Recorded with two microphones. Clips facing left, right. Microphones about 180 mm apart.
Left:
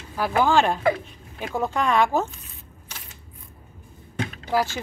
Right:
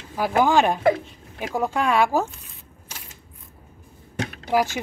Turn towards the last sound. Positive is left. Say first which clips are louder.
# right 2 dB
turn(degrees=-15)  # may be behind; listen again after turning